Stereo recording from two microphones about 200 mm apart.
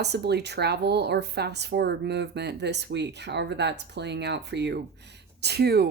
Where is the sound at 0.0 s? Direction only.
55° right (ahead or behind).